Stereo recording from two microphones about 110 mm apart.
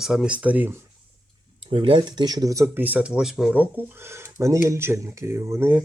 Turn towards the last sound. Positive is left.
turn(degrees=-25)  # may be behind; listen again after turning